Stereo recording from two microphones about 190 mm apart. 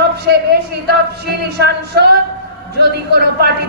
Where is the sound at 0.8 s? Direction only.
60° right (ahead or behind).